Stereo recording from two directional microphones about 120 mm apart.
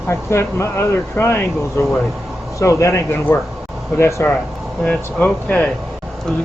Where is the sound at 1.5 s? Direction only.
Centre (ahead or behind).